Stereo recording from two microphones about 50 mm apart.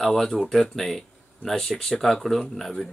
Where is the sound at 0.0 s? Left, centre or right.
Centre.